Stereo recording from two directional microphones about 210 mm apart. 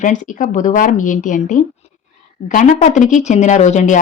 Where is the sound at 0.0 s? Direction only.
35° left (ahead or behind).